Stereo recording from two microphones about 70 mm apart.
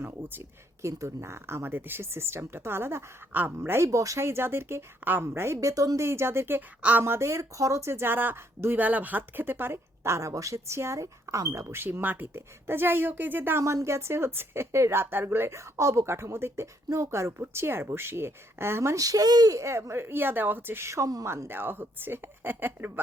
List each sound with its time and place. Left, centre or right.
0.0 s speech: right
0.8 s speech: right
3.8 s speech: right
5.5 s speech: right
6.0 s speech: right
11.8 s speech: right
18.9 s speech: right
19.5 s speech: right
21.2 s speech: right